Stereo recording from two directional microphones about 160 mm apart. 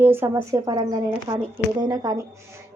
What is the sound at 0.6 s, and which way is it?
A woman's voice, 25° right (ahead or behind).